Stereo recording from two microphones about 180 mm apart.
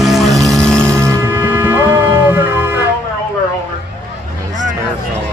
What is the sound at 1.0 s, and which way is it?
Music, 15° right (ahead or behind).